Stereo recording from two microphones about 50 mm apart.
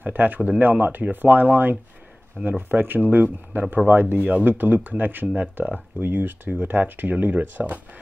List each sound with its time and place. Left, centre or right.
0.0 s speech: right